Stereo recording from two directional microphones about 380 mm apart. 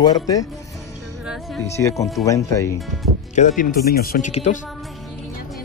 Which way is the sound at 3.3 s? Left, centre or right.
Centre.